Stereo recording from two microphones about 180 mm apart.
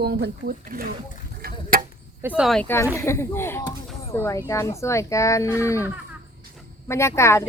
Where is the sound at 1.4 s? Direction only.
50° right (ahead or behind).